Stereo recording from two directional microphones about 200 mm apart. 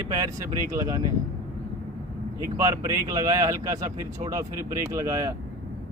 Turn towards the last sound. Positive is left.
turn(degrees=-15)  # may be behind; listen again after turning